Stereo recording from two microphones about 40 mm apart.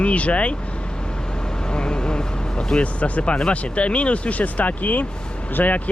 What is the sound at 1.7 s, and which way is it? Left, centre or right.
Vehicle, left.